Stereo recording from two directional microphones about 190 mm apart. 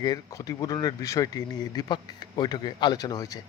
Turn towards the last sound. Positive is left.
turn(degrees=20)  # may be behind; listen again after turning